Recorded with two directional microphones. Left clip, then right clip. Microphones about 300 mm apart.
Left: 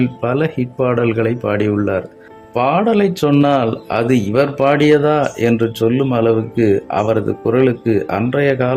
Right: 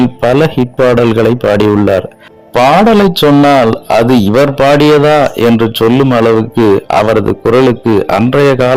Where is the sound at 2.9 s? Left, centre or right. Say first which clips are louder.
Right 7 dB; centre.